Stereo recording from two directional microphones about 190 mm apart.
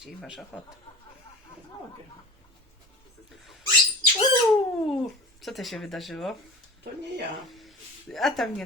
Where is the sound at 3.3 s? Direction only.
Centre (ahead or behind).